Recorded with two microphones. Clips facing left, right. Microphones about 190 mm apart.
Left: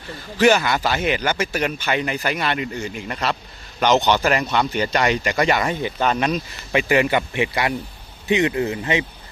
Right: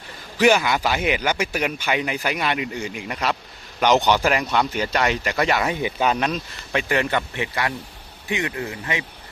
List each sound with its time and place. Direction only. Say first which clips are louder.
0.3 s speech: left 1 dB; 10° right (ahead or behind); by 9.0 s 25° left (ahead or behind)